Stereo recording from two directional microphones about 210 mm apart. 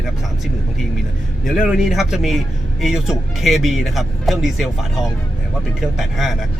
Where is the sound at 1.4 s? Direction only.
Centre (ahead or behind).